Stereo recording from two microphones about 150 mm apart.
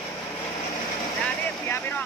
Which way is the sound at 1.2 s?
10° left (ahead or behind).